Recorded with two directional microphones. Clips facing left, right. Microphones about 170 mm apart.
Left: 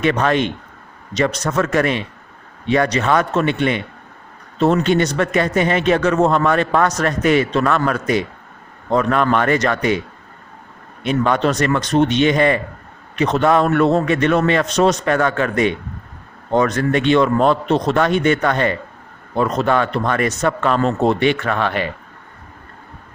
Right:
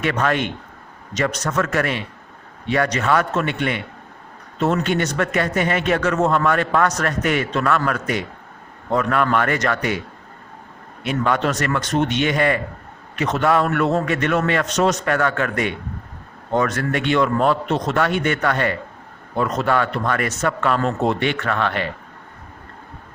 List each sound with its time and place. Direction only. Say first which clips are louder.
0.0 s a man's voice: left 4 dB; 25° left (ahead or behind)
4.6 s a man's voice: left 5 dB; 25° left (ahead or behind)
11.1 s a man's voice: left 3 dB; 25° left (ahead or behind)
13.2 s speech: left 4 dB; 35° left (ahead or behind)
13.5 s a man's voice: left 3 dB; 25° left (ahead or behind)